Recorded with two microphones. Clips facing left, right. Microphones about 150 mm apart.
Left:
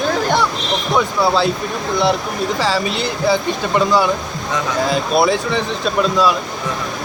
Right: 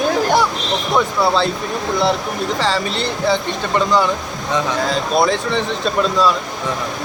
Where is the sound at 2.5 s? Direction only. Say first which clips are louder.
Left 1 dB; 5° left (ahead or behind).